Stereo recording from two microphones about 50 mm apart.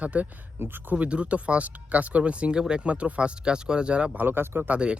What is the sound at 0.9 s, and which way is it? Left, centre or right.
Speech, right.